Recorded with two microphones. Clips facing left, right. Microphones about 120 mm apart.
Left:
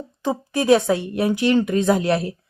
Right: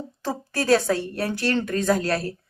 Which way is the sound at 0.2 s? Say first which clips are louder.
Left 5 dB; 15° left (ahead or behind).